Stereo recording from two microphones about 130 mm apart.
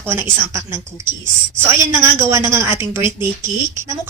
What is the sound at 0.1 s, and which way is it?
Speech, 20° right (ahead or behind).